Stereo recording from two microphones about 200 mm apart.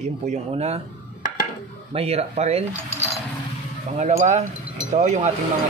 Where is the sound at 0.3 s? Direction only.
30° right (ahead or behind).